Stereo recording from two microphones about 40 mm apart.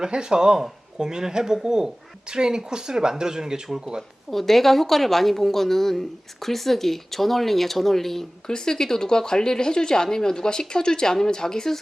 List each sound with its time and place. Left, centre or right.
0.0 s speech: centre
4.3 s a woman's voice: centre